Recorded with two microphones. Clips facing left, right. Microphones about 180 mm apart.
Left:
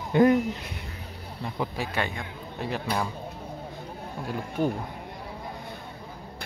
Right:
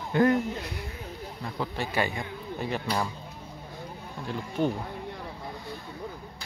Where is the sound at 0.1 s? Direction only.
20° left (ahead or behind).